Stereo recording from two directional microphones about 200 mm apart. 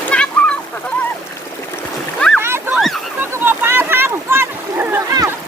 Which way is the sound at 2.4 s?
10° right (ahead or behind).